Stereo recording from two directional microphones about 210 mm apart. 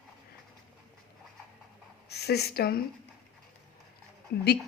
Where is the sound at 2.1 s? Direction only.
50° left (ahead or behind).